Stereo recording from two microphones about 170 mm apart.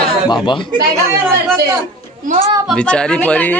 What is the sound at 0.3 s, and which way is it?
Speech, 25° left (ahead or behind).